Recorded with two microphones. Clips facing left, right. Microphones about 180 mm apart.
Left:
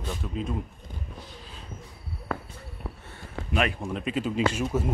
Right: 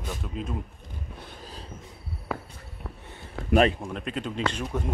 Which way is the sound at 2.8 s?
5° left (ahead or behind).